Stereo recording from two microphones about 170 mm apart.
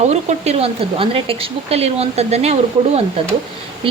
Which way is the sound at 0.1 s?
40° right (ahead or behind).